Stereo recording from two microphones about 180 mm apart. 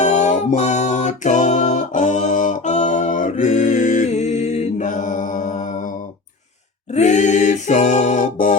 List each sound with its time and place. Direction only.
0.0 s music: 40° left (ahead or behind)
6.9 s a capella: 40° left (ahead or behind)